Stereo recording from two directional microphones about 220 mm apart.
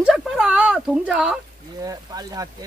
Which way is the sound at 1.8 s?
15° right (ahead or behind).